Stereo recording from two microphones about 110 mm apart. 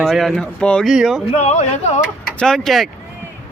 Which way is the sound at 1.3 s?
90° left.